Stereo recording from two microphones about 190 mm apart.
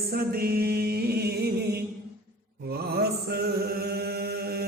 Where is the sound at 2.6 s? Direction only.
55° right (ahead or behind).